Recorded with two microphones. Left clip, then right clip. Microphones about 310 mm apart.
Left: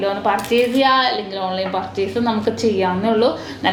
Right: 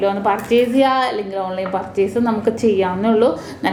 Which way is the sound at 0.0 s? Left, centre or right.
Right.